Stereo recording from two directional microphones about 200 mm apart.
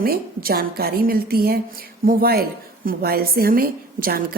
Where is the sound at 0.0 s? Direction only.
50° right (ahead or behind).